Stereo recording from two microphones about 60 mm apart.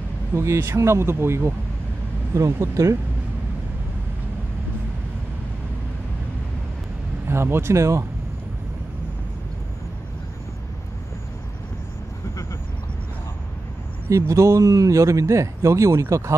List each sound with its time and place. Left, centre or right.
0.3 s speech: right
2.3 s speech: right
7.2 s speech: right
14.0 s speech: right